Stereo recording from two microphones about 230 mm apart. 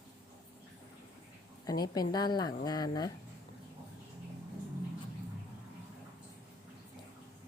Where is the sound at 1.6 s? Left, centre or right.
Centre.